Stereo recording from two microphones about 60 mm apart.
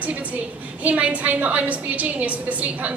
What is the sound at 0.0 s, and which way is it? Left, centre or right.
A woman's voice, right.